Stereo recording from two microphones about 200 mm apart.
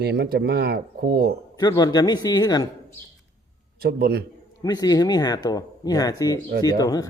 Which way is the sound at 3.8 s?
50° right (ahead or behind).